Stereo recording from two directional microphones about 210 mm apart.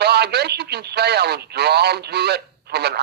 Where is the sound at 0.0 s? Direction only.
50° right (ahead or behind).